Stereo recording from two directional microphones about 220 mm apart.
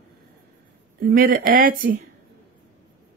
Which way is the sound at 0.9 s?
40° right (ahead or behind).